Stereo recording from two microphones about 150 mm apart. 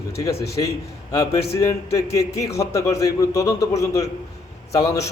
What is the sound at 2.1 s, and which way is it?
A man's voice, 20° left (ahead or behind).